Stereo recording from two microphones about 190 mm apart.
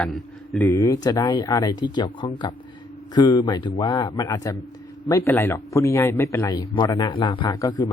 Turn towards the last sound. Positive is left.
turn(degrees=20)  # may be behind; listen again after turning